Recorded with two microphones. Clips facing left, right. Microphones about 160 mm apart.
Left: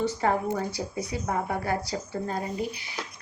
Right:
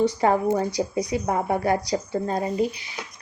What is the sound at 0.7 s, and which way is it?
Speech, 15° right (ahead or behind).